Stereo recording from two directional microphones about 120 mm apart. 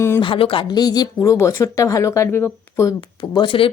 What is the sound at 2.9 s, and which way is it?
Speech, 40° left (ahead or behind).